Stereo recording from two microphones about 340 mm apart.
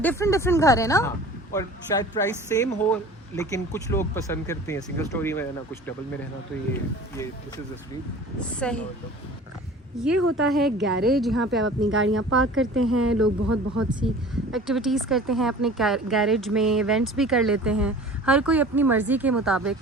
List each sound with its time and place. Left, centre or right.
0.0 s speech: centre
8.4 s speech: centre
10.2 s speech: right
10.4 s speech: centre
10.7 s speech: right
11.1 s speech: centre
11.8 s speech: right
13.1 s speech: right
14.0 s speech: centre